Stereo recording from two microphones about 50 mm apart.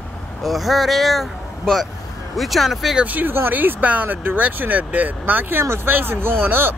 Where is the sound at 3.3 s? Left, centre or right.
Right.